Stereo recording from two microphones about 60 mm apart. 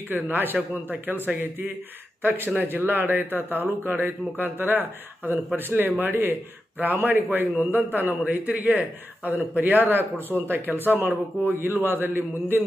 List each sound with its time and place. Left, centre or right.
0.1 s a man's voice: right